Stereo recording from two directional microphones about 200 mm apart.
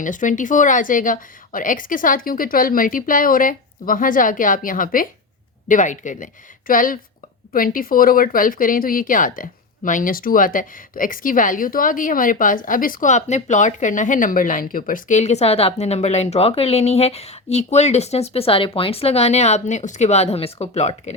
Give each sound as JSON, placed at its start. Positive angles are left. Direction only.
{"t": 0.0, "sound": "a woman's voice", "side_deg": 40}